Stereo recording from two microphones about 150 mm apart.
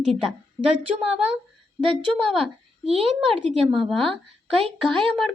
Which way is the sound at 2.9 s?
45° right (ahead or behind).